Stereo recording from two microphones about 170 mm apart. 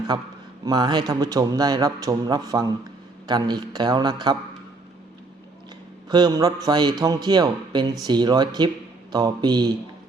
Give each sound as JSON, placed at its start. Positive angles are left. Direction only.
{"t": 0.1, "sound": "a man's voice", "side_deg": -25}
{"t": 6.1, "sound": "a man's voice", "side_deg": -25}